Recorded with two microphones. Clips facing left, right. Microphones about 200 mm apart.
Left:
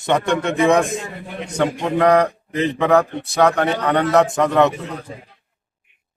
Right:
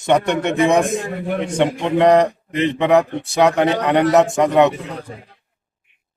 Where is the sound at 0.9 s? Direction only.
55° right (ahead or behind).